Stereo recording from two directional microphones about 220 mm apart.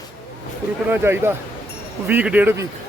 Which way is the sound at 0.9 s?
10° right (ahead or behind).